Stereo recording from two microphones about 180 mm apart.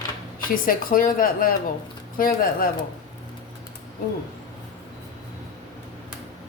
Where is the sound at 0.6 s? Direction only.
50° left (ahead or behind).